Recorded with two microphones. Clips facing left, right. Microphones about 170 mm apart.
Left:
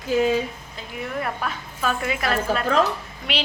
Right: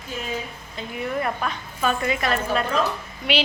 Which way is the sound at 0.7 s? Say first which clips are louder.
Right 4 dB; centre (ahead or behind).